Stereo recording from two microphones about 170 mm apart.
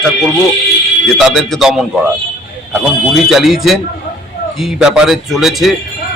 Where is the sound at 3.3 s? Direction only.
Centre (ahead or behind).